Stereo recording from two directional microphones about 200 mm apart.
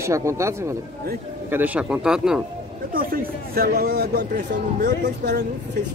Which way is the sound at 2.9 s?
45° right (ahead or behind).